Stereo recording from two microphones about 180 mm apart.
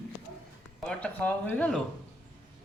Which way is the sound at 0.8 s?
5° left (ahead or behind).